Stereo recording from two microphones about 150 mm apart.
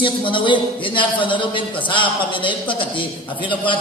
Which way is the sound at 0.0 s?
35° left (ahead or behind).